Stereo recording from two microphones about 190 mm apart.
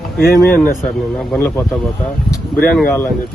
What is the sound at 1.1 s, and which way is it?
Speech, 5° left (ahead or behind).